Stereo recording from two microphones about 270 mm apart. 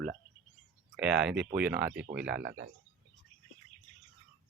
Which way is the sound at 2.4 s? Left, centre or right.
Right.